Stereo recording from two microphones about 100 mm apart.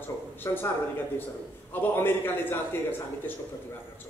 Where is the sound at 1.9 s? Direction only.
20° left (ahead or behind).